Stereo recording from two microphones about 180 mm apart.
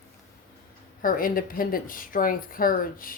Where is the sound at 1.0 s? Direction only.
50° left (ahead or behind).